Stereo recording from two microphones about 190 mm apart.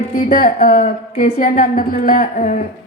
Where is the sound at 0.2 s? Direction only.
50° left (ahead or behind).